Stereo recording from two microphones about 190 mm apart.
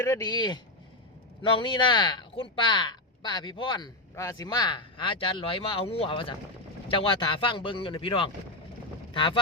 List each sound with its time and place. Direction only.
0.0 s speech: 20° left (ahead or behind)